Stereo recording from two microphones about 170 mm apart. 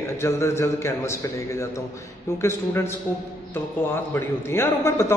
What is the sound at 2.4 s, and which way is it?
A man's voice, 15° left (ahead or behind).